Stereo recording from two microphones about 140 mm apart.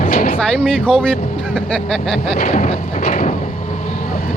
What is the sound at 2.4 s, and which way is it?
Speech, 65° left (ahead or behind).